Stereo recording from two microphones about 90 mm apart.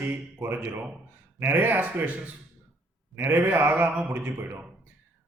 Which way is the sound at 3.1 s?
25° right (ahead or behind).